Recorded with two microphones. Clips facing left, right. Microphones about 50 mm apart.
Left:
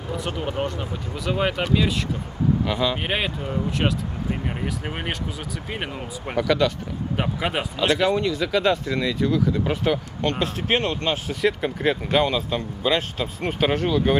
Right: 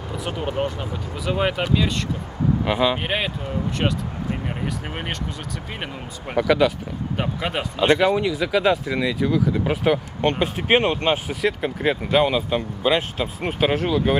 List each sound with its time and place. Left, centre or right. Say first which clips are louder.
0.1 s speech: right 1 dB; centre
2.6 s speech: right 3 dB; centre
3.0 s speech: right 1 dB; centre
6.3 s speech: right 3 dB; centre
7.2 s speech: left 1 dB; centre
7.7 s speech: right 4 dB; centre
10.4 s speech: right 5 dB; centre
11.4 s speech: left 1 dB; centre